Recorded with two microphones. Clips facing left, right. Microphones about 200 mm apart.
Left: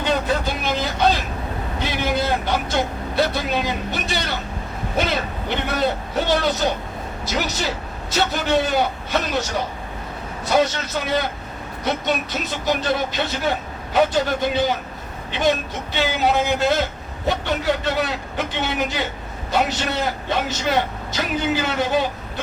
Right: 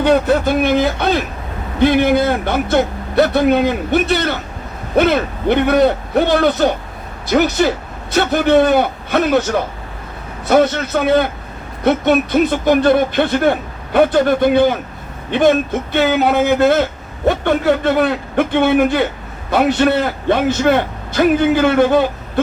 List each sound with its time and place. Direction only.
0.0 s speech: 60° right (ahead or behind)